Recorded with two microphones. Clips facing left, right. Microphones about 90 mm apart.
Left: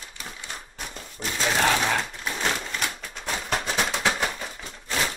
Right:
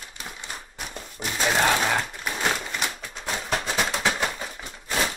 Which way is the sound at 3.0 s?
Centre (ahead or behind).